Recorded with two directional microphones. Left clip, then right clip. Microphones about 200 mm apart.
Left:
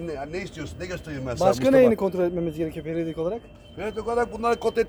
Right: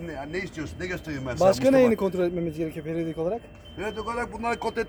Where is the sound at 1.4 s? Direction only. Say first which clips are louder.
Left 1 dB; 10° right (ahead or behind).